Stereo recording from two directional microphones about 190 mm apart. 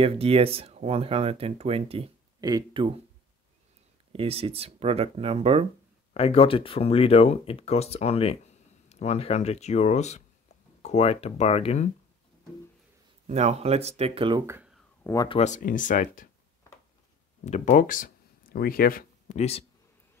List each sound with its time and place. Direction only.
0.0 s speech: 30° right (ahead or behind)
4.1 s speech: 30° right (ahead or behind)
6.1 s speech: 30° left (ahead or behind)
13.3 s speech: 35° right (ahead or behind)
14.4 s speech: 15° right (ahead or behind)
15.2 s speech: 35° left (ahead or behind)
17.5 s speech: 40° left (ahead or behind)